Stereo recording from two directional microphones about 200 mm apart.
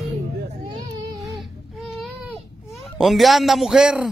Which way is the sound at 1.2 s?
Centre (ahead or behind).